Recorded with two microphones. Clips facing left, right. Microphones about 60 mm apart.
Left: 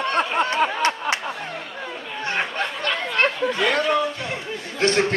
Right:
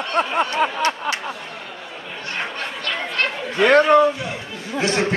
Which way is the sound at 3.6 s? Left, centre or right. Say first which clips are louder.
Right 9 dB; right.